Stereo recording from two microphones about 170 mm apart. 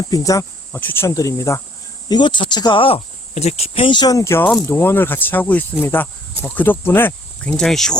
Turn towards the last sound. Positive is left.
turn(degrees=5)  # may be behind; listen again after turning